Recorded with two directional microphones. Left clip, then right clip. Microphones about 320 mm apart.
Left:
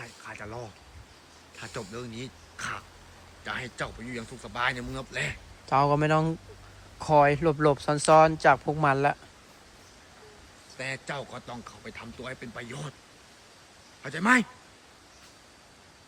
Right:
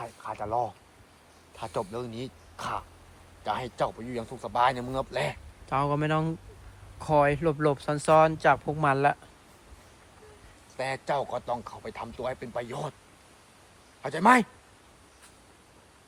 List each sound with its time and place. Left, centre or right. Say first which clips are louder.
0.0 s a sound: right 5 dB; centre
1.5 s speech: right 5 dB; centre
5.6 s speech: left 4 dB; centre
10.8 s speech: right 5 dB; centre
14.0 s speech: right 3 dB; centre